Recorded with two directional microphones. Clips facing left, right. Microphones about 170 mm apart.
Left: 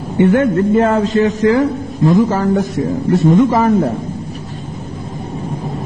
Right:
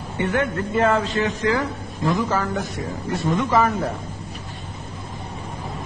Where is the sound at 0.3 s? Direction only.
45° left (ahead or behind).